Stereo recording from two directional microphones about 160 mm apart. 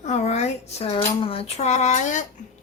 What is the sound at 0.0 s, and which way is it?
Speech, 45° left (ahead or behind).